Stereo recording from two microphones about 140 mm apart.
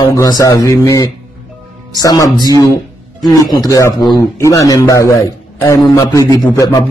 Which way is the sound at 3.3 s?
25° left (ahead or behind).